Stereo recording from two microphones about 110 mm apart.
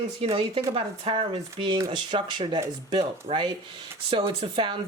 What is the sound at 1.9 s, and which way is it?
Speech, 45° right (ahead or behind).